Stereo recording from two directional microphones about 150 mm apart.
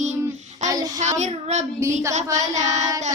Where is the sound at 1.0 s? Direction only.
50° right (ahead or behind).